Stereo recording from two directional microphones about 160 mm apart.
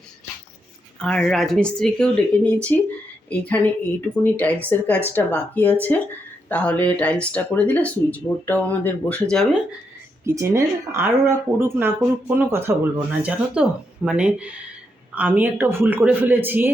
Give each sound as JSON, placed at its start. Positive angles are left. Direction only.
{"t": 0.9, "sound": "speech", "side_deg": 5}
{"t": 10.2, "sound": "speech", "side_deg": -15}